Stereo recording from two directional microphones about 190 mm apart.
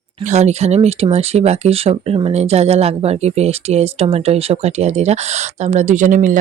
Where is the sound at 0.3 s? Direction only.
35° right (ahead or behind).